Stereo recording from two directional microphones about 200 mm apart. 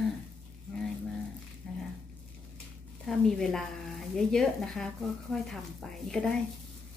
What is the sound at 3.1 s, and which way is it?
Speech, centre (ahead or behind).